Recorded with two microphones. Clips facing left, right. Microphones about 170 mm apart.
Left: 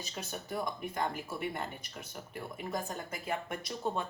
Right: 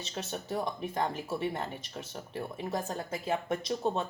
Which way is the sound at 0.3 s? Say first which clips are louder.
Right 3 dB; 30° right (ahead or behind).